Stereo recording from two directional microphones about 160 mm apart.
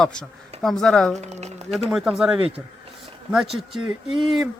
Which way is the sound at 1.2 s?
45° right (ahead or behind).